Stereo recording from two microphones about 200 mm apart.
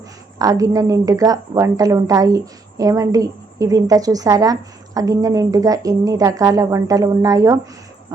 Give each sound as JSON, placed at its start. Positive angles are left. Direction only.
{"t": 0.3, "sound": "speech", "side_deg": -20}